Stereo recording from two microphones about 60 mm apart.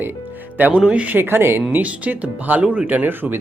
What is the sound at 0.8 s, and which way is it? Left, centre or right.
Speech, centre.